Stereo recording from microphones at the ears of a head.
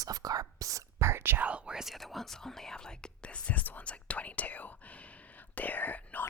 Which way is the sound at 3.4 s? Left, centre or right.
Left.